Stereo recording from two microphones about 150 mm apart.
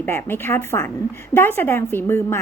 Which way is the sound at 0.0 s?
15° left (ahead or behind).